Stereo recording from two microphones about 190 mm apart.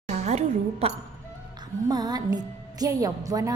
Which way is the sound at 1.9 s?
20° right (ahead or behind).